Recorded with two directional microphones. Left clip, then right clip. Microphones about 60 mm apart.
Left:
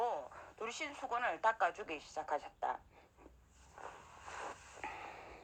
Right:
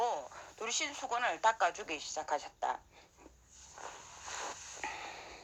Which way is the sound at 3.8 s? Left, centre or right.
Centre.